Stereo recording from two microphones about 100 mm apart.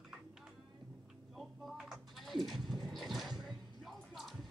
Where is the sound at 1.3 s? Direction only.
Centre (ahead or behind).